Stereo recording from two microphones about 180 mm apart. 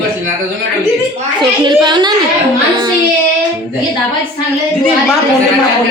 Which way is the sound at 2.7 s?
20° right (ahead or behind).